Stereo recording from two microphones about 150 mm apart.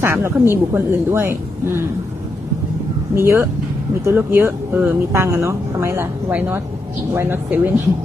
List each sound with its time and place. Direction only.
0.0 s speech: 15° right (ahead or behind)
3.2 s speech: 15° right (ahead or behind)